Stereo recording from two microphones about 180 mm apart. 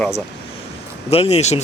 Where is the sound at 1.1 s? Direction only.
35° left (ahead or behind).